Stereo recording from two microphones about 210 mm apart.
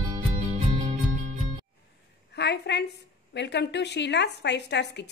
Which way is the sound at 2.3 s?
55° left (ahead or behind).